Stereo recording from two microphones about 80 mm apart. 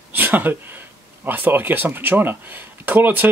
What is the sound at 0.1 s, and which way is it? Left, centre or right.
Speech, right.